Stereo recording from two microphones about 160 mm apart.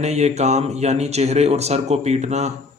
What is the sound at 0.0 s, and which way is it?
A man's voice, 45° right (ahead or behind).